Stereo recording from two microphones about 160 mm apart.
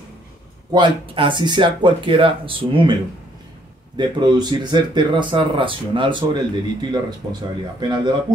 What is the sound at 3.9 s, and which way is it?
Speech, 30° right (ahead or behind).